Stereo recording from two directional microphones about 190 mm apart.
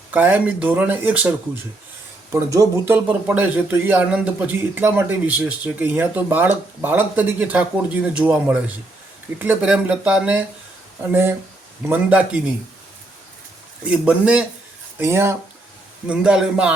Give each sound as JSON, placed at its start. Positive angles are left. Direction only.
{"t": 0.1, "sound": "speech", "side_deg": -10}
{"t": 2.3, "sound": "speech", "side_deg": -15}
{"t": 13.8, "sound": "a man's voice", "side_deg": -5}